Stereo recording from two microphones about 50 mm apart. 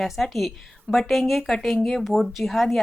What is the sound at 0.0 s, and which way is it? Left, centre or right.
A woman's voice, centre.